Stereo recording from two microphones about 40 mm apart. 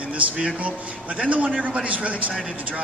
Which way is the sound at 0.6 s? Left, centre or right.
Right.